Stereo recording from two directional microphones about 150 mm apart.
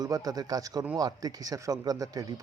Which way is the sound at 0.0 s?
25° right (ahead or behind).